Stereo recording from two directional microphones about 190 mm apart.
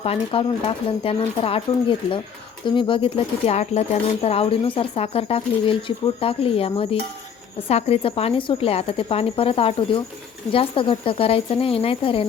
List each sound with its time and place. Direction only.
0.0 s speech: 30° left (ahead or behind)